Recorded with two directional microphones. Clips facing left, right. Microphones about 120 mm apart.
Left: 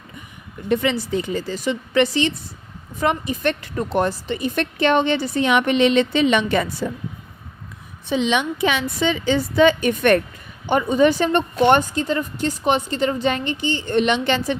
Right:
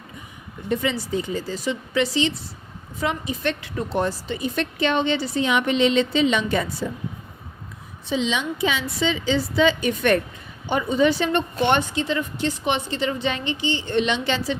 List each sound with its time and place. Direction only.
0.7 s a woman's voice: 70° left (ahead or behind)
8.1 s a woman's voice: 60° left (ahead or behind)